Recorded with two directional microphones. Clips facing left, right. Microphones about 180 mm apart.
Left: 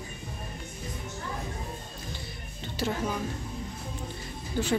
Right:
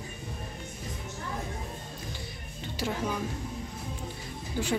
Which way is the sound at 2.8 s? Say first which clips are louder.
Left 2 dB; 10° right (ahead or behind).